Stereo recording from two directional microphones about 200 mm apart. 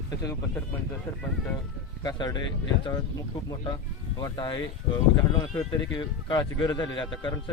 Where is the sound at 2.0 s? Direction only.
20° left (ahead or behind).